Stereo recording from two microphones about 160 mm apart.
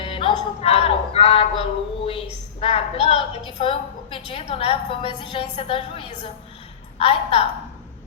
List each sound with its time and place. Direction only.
0.0 s music: 35° left (ahead or behind)
2.0 s a woman's voice: 35° left (ahead or behind)